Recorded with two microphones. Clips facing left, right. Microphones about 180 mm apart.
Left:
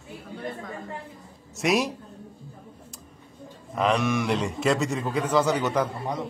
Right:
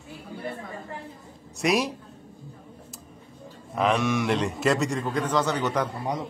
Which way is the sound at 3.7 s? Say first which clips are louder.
Even; centre (ahead or behind).